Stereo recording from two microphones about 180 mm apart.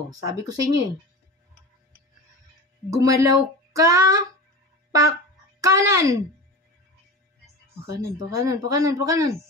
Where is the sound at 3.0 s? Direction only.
20° right (ahead or behind).